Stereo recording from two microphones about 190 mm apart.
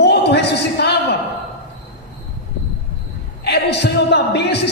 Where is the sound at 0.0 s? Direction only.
60° left (ahead or behind).